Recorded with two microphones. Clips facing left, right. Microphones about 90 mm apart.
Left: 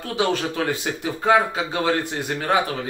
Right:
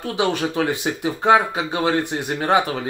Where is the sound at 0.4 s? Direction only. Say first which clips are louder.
Right 3 dB; 15° right (ahead or behind).